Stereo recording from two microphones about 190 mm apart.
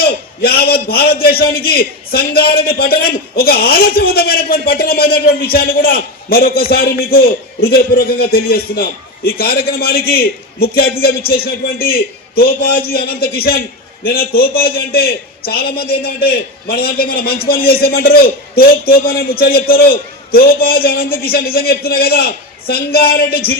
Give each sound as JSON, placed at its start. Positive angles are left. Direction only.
{"t": 0.0, "sound": "a man's voice", "side_deg": 55}